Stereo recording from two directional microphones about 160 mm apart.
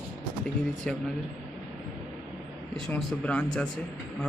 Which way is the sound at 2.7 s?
5° left (ahead or behind).